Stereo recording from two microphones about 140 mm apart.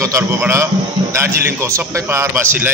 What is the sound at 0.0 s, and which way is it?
A man's voice, 20° right (ahead or behind).